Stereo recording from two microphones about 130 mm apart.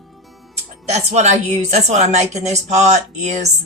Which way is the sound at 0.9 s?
60° right (ahead or behind).